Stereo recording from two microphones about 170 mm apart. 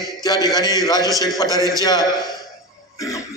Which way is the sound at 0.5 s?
20° left (ahead or behind).